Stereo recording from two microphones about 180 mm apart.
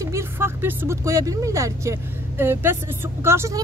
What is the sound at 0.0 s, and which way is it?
A woman's voice, 15° right (ahead or behind).